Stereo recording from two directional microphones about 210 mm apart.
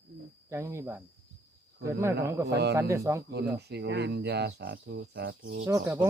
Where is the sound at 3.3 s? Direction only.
50° right (ahead or behind).